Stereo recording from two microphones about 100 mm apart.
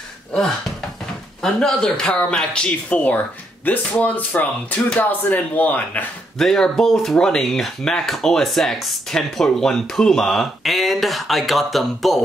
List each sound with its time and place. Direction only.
1.4 s speech: 5° left (ahead or behind)
6.3 s speech: 5° left (ahead or behind)